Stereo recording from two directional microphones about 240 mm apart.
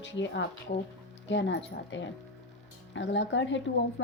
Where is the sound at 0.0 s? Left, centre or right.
Left.